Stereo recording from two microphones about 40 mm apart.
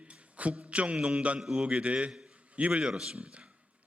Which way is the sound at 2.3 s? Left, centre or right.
Right.